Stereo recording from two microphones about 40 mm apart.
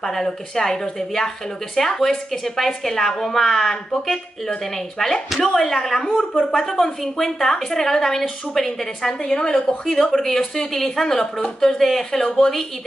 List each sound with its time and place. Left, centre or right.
0.0 s a woman's voice: centre
6.0 s a woman's voice: left
6.5 s a woman's voice: centre
9.3 s a woman's voice: left
10.1 s a woman's voice: centre